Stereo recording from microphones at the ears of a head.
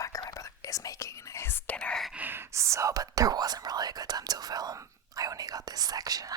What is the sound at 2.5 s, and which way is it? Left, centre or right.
Speech, right.